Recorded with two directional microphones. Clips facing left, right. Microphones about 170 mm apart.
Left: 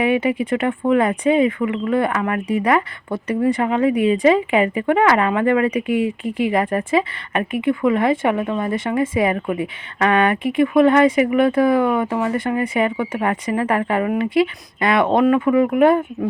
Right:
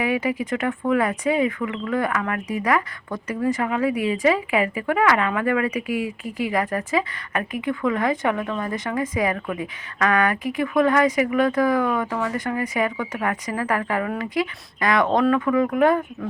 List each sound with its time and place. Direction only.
0.0 s a woman's voice: 25° left (ahead or behind)